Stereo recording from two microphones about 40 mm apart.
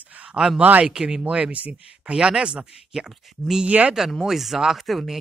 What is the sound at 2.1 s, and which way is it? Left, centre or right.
Speech, right.